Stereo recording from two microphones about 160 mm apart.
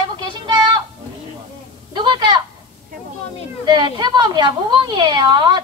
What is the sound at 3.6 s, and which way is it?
A woman's voice, 25° right (ahead or behind).